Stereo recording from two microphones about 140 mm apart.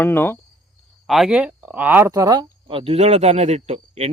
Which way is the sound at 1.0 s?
Centre (ahead or behind).